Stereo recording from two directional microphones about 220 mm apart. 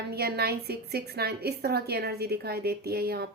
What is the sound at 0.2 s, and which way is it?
A woman's voice, 45° right (ahead or behind).